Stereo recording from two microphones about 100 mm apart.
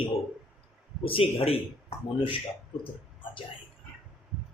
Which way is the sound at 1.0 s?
65° left (ahead or behind).